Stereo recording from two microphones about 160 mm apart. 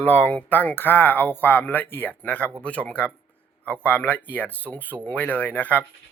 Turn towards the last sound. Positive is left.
turn(degrees=10)  # may be behind; listen again after turning